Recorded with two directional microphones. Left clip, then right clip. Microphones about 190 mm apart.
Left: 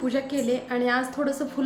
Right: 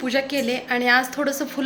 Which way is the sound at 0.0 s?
Centre (ahead or behind).